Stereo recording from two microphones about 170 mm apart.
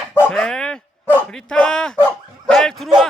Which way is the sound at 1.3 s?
5° left (ahead or behind).